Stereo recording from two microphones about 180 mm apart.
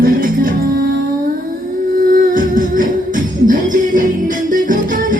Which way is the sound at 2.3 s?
50° right (ahead or behind).